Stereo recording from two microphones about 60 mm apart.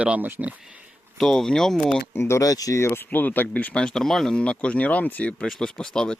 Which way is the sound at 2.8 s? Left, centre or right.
Left.